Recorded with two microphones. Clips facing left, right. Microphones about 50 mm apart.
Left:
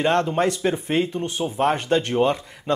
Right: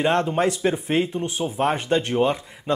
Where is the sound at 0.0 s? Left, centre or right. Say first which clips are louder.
Even; centre.